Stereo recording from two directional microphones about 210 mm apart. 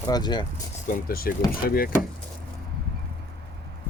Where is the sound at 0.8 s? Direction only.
40° left (ahead or behind).